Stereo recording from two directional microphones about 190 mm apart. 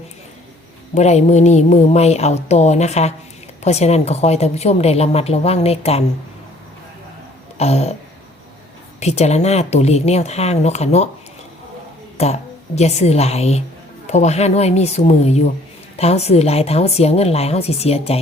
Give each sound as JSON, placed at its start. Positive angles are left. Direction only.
{"t": 0.9, "sound": "a woman's voice", "side_deg": 35}
{"t": 7.6, "sound": "a woman's voice", "side_deg": 35}
{"t": 9.0, "sound": "a woman's voice", "side_deg": 35}
{"t": 12.1, "sound": "a woman's voice", "side_deg": 35}